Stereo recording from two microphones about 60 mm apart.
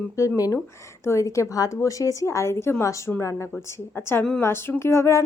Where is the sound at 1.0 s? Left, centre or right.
Left.